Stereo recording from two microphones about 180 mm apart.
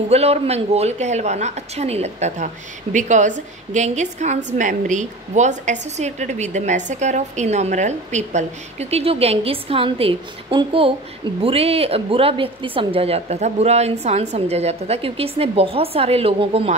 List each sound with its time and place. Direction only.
0.1 s a woman's voice: 35° right (ahead or behind)